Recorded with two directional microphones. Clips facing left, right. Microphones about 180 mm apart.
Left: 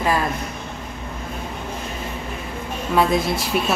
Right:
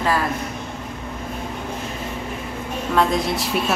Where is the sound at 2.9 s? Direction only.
5° left (ahead or behind).